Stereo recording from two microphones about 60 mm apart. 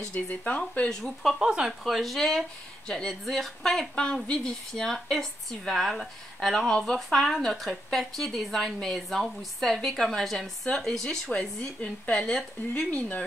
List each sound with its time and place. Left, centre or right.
0.1 s speech: left
1.4 s speech: centre
1.7 s a woman's voice: centre
3.9 s a woman's voice: centre